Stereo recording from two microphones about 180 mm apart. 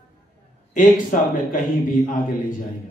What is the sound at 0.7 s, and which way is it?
Speech, 45° left (ahead or behind).